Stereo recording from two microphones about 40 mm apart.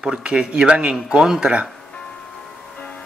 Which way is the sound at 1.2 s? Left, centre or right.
Centre.